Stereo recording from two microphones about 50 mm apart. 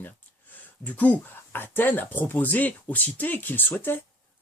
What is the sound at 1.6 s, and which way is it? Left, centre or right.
Speech, left.